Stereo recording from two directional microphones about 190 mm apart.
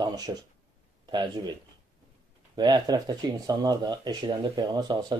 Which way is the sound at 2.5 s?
20° right (ahead or behind).